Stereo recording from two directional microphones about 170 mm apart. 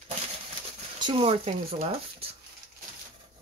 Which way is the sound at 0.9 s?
25° right (ahead or behind).